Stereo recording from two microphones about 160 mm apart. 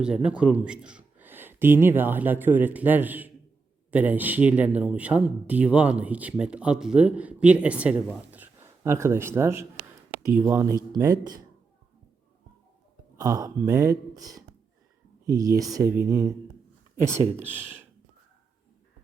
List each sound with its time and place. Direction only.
0.0 s speech: 5° right (ahead or behind); by 11.3 s 25° right (ahead or behind)
13.1 s speech: 20° right (ahead or behind)